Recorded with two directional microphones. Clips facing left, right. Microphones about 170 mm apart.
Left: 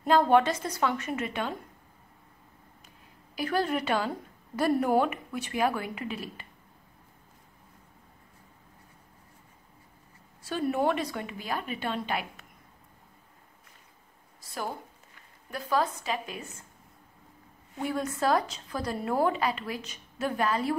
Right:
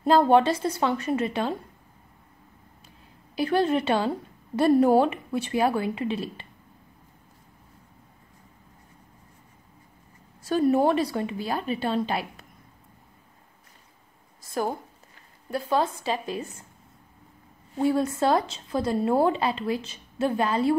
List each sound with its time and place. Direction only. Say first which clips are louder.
0.0 s a woman's voice: right 3 dB; 30° right (ahead or behind)
3.3 s speech: right 5 dB; 25° right (ahead or behind)
10.4 s a woman's voice: right 6 dB; 40° right (ahead or behind)
14.4 s a sound: right 8 dB; 45° right (ahead or behind)
15.5 s a woman's voice: right 3 dB; 30° right (ahead or behind)
17.7 s speech: right 8 dB; 30° right (ahead or behind)